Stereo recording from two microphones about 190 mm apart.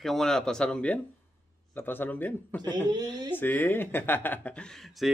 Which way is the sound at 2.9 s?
20° right (ahead or behind).